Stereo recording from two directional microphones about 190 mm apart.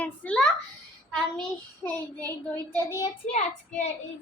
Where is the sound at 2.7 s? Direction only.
15° left (ahead or behind).